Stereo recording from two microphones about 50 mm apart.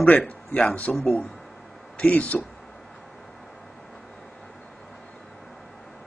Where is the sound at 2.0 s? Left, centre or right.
Left.